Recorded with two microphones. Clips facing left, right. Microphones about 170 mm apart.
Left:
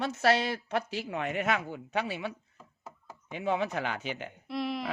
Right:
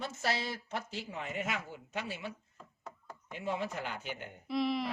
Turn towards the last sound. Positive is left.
turn(degrees=0)  # may be behind; listen again after turning